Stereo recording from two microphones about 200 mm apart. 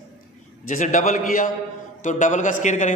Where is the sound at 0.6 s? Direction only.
40° left (ahead or behind).